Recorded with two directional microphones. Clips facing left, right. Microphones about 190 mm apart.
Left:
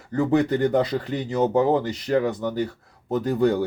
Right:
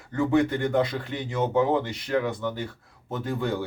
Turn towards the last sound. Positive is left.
turn(degrees=40)  # may be behind; listen again after turning